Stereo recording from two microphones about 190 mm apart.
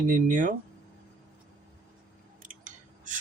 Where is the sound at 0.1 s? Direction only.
45° right (ahead or behind).